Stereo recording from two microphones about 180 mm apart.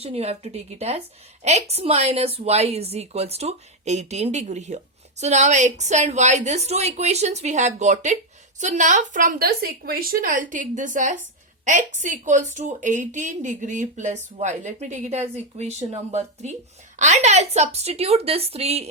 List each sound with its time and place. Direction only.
0.0 s a woman's voice: 35° right (ahead or behind)